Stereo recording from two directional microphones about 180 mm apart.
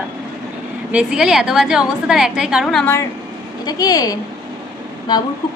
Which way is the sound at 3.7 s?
20° left (ahead or behind).